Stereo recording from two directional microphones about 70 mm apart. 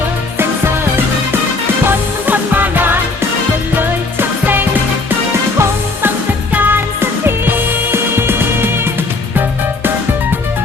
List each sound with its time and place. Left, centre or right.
2.2 s music: right
6.5 s music: right